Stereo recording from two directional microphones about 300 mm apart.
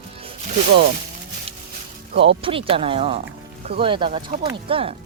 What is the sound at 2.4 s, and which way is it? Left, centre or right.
Speech, centre.